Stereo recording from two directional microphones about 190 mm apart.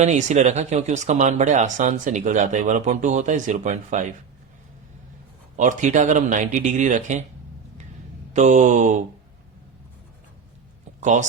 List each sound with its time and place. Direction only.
0.0 s speech: 40° right (ahead or behind)
5.5 s speech: 40° right (ahead or behind)
8.3 s speech: 40° right (ahead or behind)
11.0 s speech: 40° right (ahead or behind)